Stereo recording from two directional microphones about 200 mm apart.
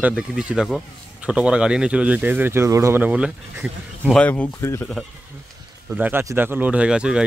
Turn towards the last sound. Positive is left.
turn(degrees=-5)  # may be behind; listen again after turning